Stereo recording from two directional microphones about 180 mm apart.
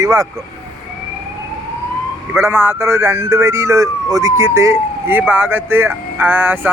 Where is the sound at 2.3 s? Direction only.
15° right (ahead or behind).